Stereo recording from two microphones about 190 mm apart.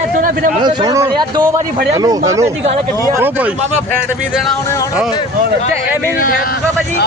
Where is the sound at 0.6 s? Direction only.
25° right (ahead or behind).